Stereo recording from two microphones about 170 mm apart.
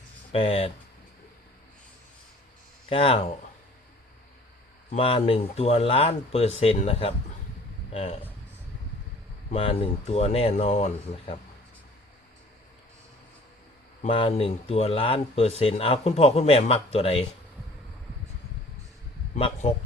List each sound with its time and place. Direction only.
0.3 s speech: 35° left (ahead or behind)
2.9 s speech: 35° left (ahead or behind)
4.9 s speech: 35° left (ahead or behind)
9.5 s speech: 35° left (ahead or behind)
14.1 s speech: 35° left (ahead or behind)